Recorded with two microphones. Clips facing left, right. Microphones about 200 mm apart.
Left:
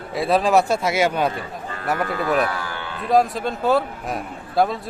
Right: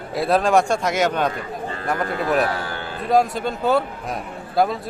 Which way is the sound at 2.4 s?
35° right (ahead or behind).